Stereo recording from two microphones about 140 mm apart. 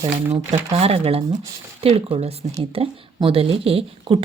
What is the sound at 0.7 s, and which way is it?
A woman's voice, 45° right (ahead or behind).